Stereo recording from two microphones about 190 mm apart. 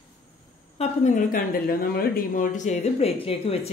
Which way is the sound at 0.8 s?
40° left (ahead or behind).